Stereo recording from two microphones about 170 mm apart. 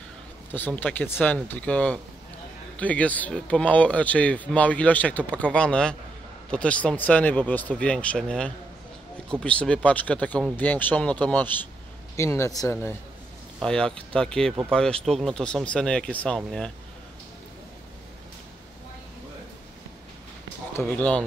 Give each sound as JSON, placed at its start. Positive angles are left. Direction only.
{"t": 0.5, "sound": "speech", "side_deg": 10}
{"t": 13.6, "sound": "speech", "side_deg": 5}
{"t": 20.7, "sound": "speech", "side_deg": 10}